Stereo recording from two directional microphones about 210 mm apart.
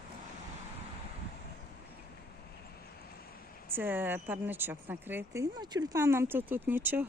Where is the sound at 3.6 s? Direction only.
10° right (ahead or behind).